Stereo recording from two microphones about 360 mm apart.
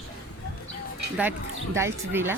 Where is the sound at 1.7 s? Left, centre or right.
Centre.